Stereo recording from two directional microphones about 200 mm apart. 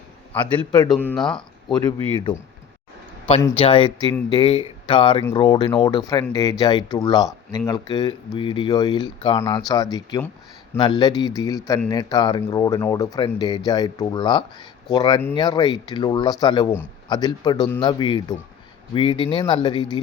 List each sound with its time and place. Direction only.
0.9 s speech: 5° left (ahead or behind)
1.6 s speech: 20° left (ahead or behind)
2.3 s speech: 5° left (ahead or behind)
3.6 s speech: 25° left (ahead or behind)